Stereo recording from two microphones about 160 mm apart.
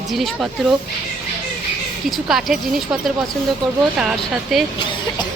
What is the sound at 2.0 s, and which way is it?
Speech, centre (ahead or behind).